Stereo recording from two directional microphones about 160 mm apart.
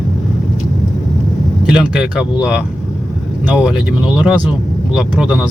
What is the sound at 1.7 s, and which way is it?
Speech, 5° right (ahead or behind).